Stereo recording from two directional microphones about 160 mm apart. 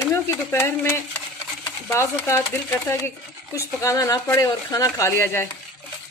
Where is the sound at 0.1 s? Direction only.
15° left (ahead or behind).